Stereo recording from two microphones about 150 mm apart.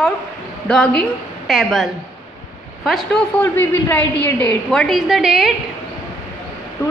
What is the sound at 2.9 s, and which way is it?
A woman's voice, 5° left (ahead or behind).